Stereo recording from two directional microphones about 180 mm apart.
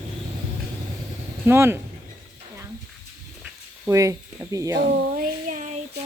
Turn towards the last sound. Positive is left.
turn(degrees=-45)  # may be behind; listen again after turning